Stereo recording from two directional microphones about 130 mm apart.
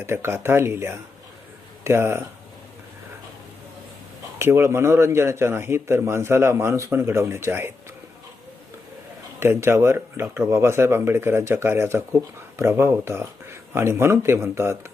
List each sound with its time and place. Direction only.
0.0 s speech: 20° right (ahead or behind)
4.4 s speech: 20° right (ahead or behind)
9.4 s speech: 20° right (ahead or behind)